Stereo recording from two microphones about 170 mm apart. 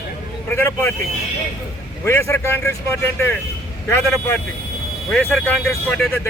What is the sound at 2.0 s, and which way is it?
A man's voice, 15° left (ahead or behind).